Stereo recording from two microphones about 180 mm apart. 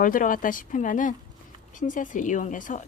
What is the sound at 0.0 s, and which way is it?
Speech, 50° left (ahead or behind).